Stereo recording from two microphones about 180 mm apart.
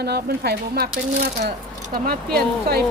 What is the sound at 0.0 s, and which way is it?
Speech, 60° right (ahead or behind).